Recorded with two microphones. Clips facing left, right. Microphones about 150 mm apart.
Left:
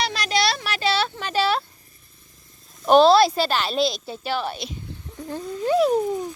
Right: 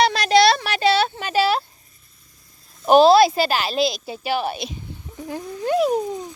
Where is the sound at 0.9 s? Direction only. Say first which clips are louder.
Right 5 dB; 50° right (ahead or behind).